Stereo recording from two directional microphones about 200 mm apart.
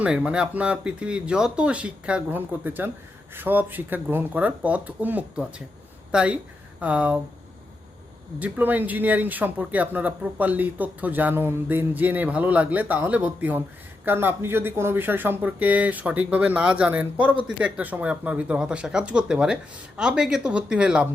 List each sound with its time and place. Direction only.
0.0 s speech: 5° right (ahead or behind)
8.4 s speech: 10° right (ahead or behind)